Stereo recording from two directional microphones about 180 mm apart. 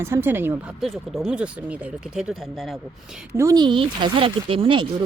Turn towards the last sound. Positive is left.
turn(degrees=-30)  # may be behind; listen again after turning